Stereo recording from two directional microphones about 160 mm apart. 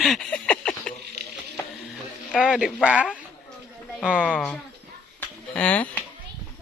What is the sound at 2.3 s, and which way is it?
Speech, 5° right (ahead or behind).